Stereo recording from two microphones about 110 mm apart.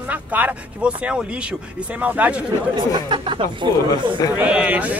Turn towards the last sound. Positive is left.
turn(degrees=-15)  # may be behind; listen again after turning